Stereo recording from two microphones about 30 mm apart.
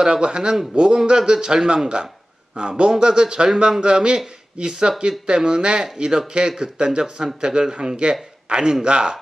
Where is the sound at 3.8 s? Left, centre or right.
Right.